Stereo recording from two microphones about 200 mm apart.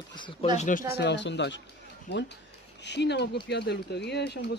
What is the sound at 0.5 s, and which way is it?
Speech, 40° left (ahead or behind).